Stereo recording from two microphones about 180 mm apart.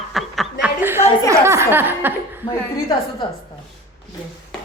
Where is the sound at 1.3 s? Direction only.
15° right (ahead or behind).